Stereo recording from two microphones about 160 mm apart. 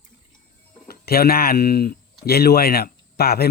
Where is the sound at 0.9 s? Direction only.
75° left (ahead or behind).